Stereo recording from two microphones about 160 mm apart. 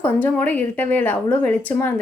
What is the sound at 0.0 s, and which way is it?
A woman's voice, 10° left (ahead or behind).